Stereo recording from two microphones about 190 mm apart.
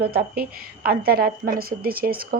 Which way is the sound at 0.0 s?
55° right (ahead or behind).